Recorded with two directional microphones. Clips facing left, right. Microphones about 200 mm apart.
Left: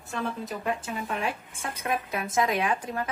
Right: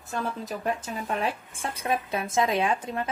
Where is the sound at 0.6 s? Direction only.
35° right (ahead or behind).